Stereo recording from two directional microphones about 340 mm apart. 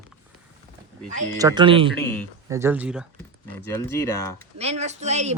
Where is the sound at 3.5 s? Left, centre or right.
Centre.